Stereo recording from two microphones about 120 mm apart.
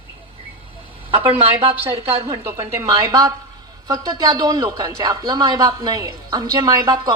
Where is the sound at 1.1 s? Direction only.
50° right (ahead or behind).